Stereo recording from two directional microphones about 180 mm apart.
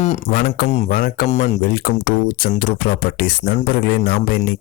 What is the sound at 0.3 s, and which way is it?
Speech, 55° left (ahead or behind).